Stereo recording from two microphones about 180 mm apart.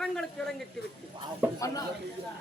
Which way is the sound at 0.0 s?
5° left (ahead or behind).